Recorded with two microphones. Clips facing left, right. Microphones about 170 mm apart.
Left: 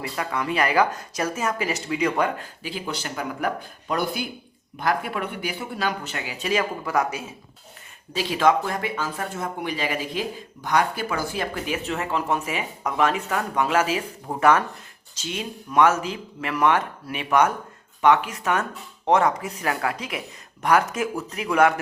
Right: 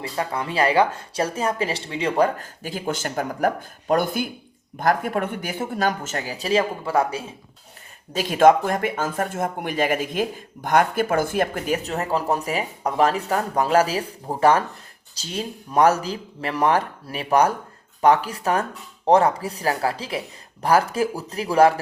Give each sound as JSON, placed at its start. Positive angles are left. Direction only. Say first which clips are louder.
{"t": 0.0, "sound": "speech", "louder": "right 1 dB", "side_deg": -30}
{"t": 8.1, "sound": "speech", "louder": "right 5 dB", "side_deg": -50}